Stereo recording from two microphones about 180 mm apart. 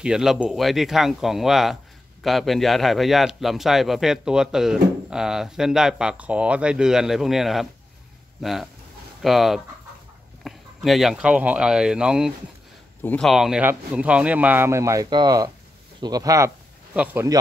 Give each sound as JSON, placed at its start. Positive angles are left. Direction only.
{"t": 0.0, "sound": "a man's voice", "side_deg": -5}